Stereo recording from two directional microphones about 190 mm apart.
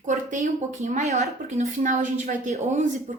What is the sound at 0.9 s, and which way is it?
A woman's voice, 35° right (ahead or behind).